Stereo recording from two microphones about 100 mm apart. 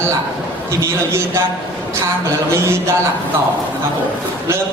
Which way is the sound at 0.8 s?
30° right (ahead or behind).